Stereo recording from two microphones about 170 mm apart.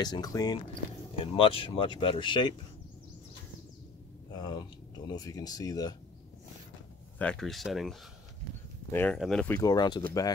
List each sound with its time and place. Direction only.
0.0 s speech: 20° left (ahead or behind)
1.1 s speech: 30° left (ahead or behind)
4.3 s speech: 25° left (ahead or behind)
7.2 s speech: 5° left (ahead or behind)
9.5 s speech: 20° left (ahead or behind)